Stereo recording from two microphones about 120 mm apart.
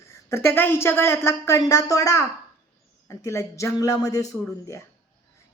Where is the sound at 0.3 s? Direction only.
20° left (ahead or behind).